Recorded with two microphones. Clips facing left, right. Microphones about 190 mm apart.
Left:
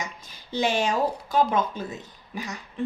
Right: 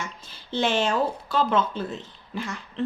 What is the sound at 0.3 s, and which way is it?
Speech, 10° left (ahead or behind).